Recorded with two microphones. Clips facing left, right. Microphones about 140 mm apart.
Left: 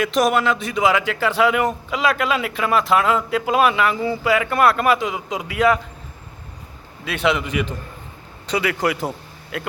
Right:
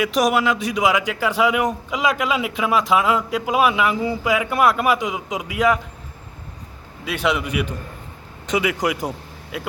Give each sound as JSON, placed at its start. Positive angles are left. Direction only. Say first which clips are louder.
{"t": 0.0, "sound": "a man's voice", "louder": "even", "side_deg": -10}
{"t": 7.0, "sound": "a man's voice", "louder": "left 1 dB", "side_deg": -10}